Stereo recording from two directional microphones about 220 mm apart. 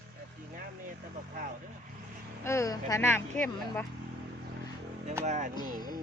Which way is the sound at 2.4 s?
10° left (ahead or behind).